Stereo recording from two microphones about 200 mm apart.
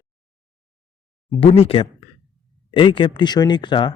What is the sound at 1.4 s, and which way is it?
Speech, 30° left (ahead or behind).